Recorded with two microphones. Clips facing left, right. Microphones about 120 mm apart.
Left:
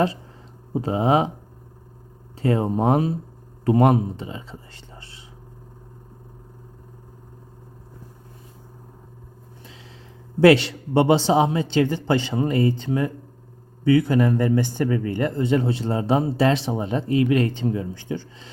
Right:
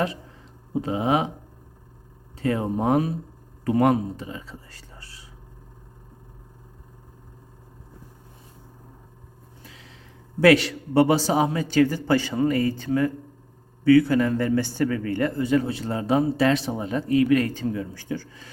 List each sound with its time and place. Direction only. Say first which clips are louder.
0.7 s speech: left 3 dB; 30° left (ahead or behind)
2.3 s speech: left 3 dB; 30° left (ahead or behind)
10.4 s speech: left 2 dB; 30° left (ahead or behind)